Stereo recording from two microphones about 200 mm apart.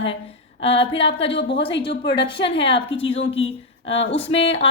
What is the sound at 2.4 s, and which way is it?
Speech, 30° left (ahead or behind).